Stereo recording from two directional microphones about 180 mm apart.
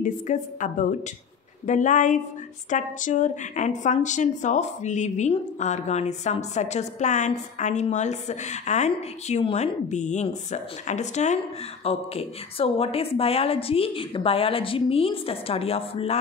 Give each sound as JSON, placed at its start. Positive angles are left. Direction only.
{"t": 0.0, "sound": "a woman's voice", "side_deg": 45}